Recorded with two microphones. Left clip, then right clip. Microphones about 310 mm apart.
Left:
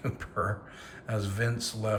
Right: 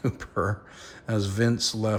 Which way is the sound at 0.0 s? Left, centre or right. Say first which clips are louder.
Right 4 dB; centre.